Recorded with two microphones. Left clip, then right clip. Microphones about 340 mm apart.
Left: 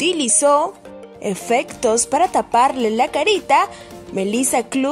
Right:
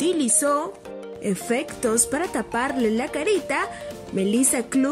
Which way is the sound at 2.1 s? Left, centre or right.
Left.